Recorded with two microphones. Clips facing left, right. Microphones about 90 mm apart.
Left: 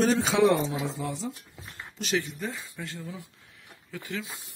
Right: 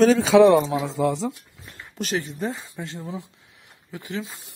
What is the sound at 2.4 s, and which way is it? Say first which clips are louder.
Speech: right 6 dB; 25° right (ahead or behind).